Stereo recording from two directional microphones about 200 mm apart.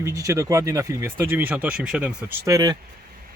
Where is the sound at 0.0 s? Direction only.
15° right (ahead or behind).